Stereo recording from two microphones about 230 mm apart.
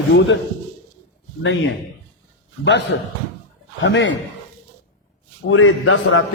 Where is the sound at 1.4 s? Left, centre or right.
Left.